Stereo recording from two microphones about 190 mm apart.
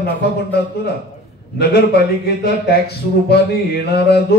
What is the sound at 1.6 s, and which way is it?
A man's voice, 55° left (ahead or behind).